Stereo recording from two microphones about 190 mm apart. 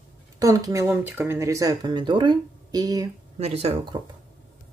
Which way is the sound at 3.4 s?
30° right (ahead or behind).